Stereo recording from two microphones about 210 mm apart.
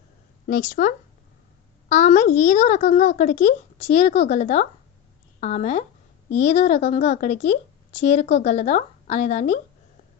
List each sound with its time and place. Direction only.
0.4 s speech: 40° left (ahead or behind)